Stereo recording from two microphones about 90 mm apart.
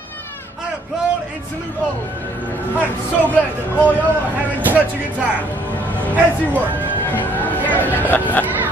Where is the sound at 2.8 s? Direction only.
20° left (ahead or behind).